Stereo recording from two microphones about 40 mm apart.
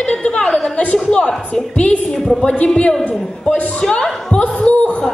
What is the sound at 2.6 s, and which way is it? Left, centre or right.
Speech, left.